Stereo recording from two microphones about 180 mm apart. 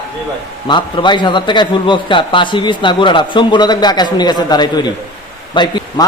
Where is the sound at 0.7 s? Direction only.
25° left (ahead or behind).